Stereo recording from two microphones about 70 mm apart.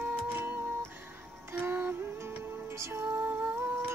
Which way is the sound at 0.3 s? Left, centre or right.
Right.